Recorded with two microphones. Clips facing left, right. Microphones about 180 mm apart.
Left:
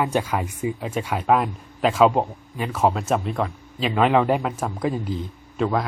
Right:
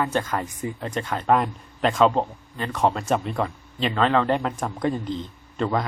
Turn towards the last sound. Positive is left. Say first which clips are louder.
# left 2 dB
turn(degrees=0)  # may be behind; listen again after turning